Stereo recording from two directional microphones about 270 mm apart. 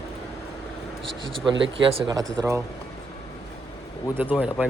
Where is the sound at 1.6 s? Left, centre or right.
Centre.